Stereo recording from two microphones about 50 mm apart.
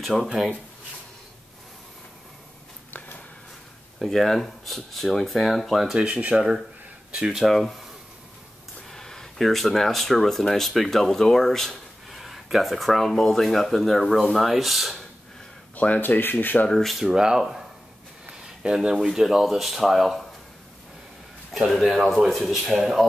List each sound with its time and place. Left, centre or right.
0.0 s speech: centre
4.0 s speech: centre
5.9 s speech: right
7.3 s speech: centre
8.9 s speech: centre
15.7 s speech: left
16.0 s speech: left
16.6 s speech: centre
17.0 s speech: centre
21.5 s speech: centre